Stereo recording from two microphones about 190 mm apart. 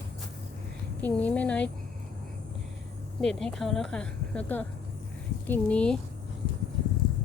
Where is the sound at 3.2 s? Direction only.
5° left (ahead or behind).